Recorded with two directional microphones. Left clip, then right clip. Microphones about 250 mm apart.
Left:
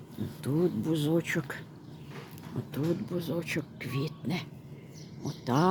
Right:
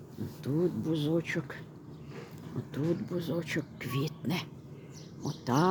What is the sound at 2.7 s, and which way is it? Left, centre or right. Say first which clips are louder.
A woman's voice: left 1 dB; centre.